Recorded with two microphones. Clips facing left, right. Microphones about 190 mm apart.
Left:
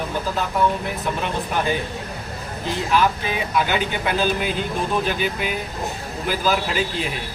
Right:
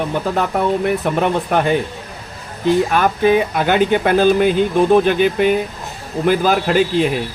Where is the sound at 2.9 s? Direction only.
55° right (ahead or behind).